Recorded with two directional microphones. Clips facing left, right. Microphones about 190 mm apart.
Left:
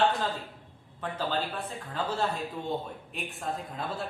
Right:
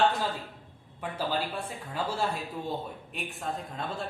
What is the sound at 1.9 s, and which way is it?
A woman's voice, 10° right (ahead or behind).